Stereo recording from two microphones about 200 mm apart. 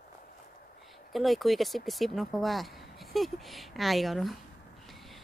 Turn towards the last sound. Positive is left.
turn(degrees=0)  # may be behind; listen again after turning